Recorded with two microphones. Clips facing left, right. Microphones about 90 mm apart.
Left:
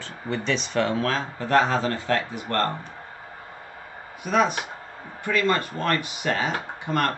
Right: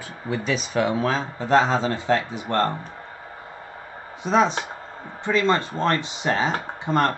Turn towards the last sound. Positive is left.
turn(degrees=-25)  # may be behind; listen again after turning